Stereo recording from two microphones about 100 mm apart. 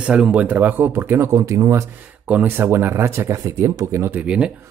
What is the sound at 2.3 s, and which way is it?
Speech, 20° right (ahead or behind).